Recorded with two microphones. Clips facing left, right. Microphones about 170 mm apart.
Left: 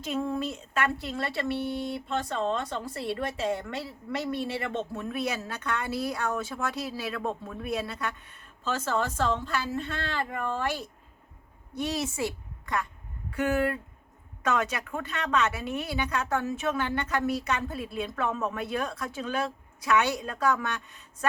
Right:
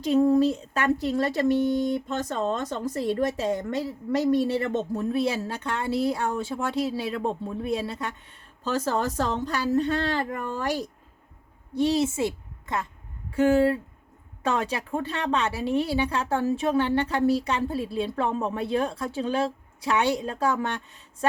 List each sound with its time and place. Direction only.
0.0 s a woman's voice: 35° right (ahead or behind)
8.6 s a woman's voice: 35° right (ahead or behind)
11.7 s a woman's voice: 30° right (ahead or behind)